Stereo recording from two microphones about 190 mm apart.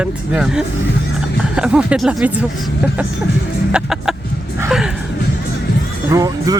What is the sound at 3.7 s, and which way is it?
Music, 5° right (ahead or behind).